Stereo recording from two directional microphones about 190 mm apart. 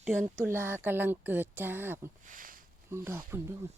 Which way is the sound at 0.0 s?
10° right (ahead or behind).